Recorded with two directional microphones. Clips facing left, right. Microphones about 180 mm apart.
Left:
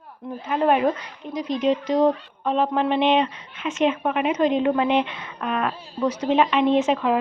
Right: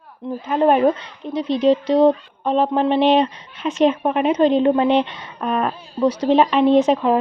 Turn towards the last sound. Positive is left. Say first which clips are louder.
# right 5 dB
turn(degrees=-35)  # may be behind; listen again after turning